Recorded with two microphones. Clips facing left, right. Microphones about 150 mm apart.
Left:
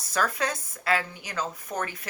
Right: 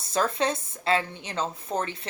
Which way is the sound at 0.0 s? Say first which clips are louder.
Right 3 dB; 25° right (ahead or behind).